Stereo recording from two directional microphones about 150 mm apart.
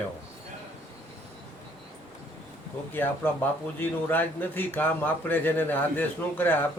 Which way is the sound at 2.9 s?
10° left (ahead or behind).